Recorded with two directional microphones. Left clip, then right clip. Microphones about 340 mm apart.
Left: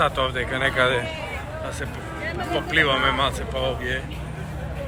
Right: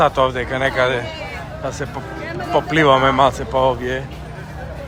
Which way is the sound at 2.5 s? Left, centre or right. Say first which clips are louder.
Right 7 dB; right.